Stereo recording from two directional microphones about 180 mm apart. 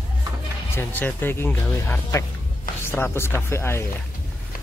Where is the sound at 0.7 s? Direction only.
10° left (ahead or behind).